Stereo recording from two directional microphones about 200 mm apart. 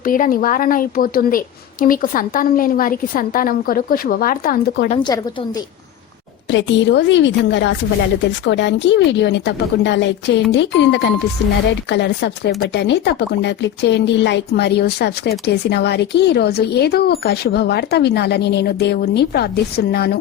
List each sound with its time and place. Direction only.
0.0 s a woman's voice: 45° left (ahead or behind)
4.9 s a woman's voice: 20° left (ahead or behind)
6.5 s speech: 65° left (ahead or behind)